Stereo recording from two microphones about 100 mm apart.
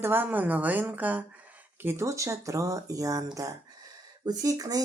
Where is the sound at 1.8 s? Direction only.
25° right (ahead or behind).